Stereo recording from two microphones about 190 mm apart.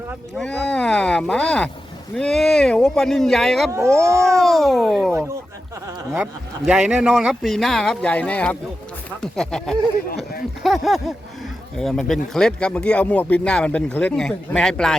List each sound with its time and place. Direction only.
0.7 s speech: 5° left (ahead or behind)
3.7 s speech: 15° right (ahead or behind)
4.3 s speech: centre (ahead or behind)
6.7 s speech: 5° right (ahead or behind)